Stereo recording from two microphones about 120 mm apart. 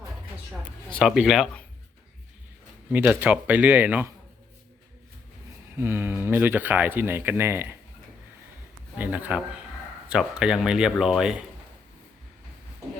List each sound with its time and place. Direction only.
1.0 s speech: 5° right (ahead or behind)
2.9 s speech: 15° right (ahead or behind)
5.7 s speech: 20° right (ahead or behind)
9.0 s speech: 15° right (ahead or behind)